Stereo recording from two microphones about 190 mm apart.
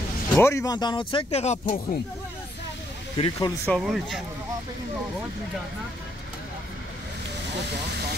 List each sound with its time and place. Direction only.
0.4 s speech: 15° left (ahead or behind); by 1.8 s 35° left (ahead or behind)
3.2 s speech: 20° left (ahead or behind)
3.6 s speech: centre (ahead or behind)